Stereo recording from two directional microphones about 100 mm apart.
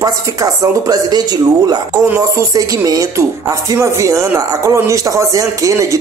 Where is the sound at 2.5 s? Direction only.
35° right (ahead or behind).